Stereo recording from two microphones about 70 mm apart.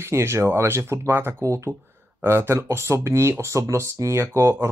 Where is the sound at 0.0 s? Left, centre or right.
Right.